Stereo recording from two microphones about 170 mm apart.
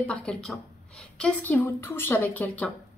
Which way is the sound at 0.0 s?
5° left (ahead or behind).